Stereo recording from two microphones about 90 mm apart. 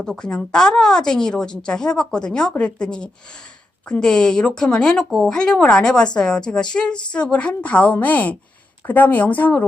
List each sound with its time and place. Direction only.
0.0 s a woman's voice: 10° left (ahead or behind)